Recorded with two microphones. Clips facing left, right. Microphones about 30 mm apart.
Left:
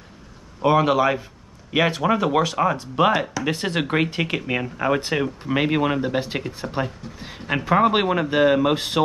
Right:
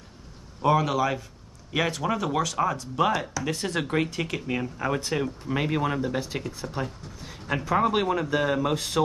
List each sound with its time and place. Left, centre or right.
0.6 s a man's voice: left